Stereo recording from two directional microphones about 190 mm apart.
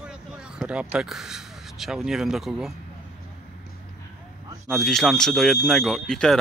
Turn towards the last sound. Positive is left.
turn(degrees=5)  # may be behind; listen again after turning